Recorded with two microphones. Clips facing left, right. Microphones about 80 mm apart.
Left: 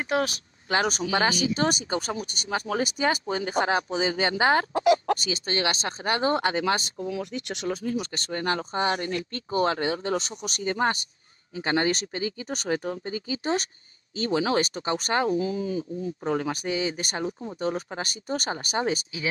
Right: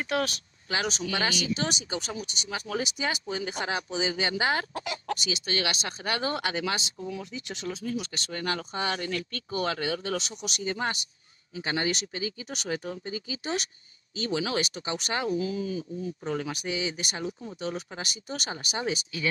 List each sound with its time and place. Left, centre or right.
0.0 s speech: centre
0.7 s speech: left
7.1 s speech: left
7.8 s speech: left